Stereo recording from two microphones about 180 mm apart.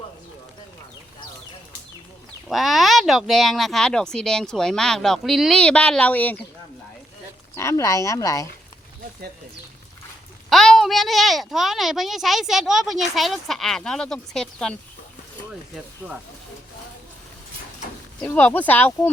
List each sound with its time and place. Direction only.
2.5 s speech: centre (ahead or behind)
7.5 s speech: 15° left (ahead or behind)
10.5 s speech: centre (ahead or behind)
16.0 s speech: 10° right (ahead or behind)
18.2 s speech: 10° left (ahead or behind)